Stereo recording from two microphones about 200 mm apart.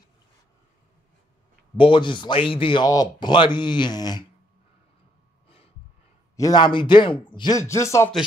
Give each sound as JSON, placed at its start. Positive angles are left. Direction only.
{"t": 1.8, "sound": "speech", "side_deg": 25}
{"t": 6.3, "sound": "speech", "side_deg": 20}